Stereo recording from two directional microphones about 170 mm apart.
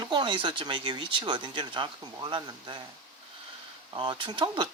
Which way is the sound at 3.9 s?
30° right (ahead or behind).